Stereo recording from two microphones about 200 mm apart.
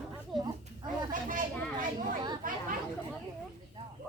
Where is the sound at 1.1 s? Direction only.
40° right (ahead or behind).